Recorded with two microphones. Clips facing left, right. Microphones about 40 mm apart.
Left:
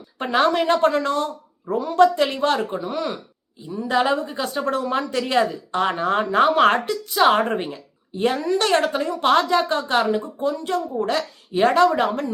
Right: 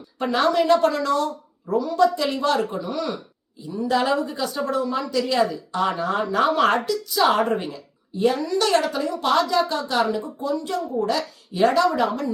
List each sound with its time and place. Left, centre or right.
0.2 s speech: left
4.7 s speech: left